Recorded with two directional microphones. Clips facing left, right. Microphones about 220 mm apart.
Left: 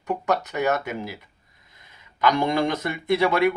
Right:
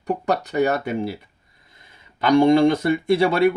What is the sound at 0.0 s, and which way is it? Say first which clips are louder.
Speech: right 2 dB; 30° right (ahead or behind).